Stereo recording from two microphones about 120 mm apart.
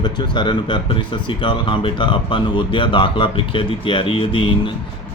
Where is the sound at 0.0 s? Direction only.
40° left (ahead or behind).